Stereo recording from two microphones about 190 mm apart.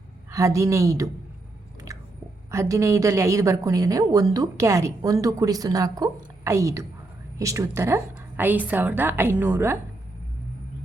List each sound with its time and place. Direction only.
0.3 s a woman's voice: 15° right (ahead or behind)
2.5 s a woman's voice: 15° right (ahead or behind)